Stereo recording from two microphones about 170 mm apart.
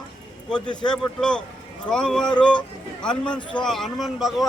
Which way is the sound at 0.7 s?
25° left (ahead or behind).